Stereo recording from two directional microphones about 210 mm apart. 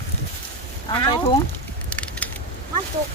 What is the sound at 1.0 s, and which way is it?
Speech, 20° left (ahead or behind).